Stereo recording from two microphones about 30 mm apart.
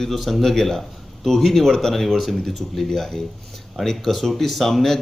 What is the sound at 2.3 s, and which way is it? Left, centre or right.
Speech, centre.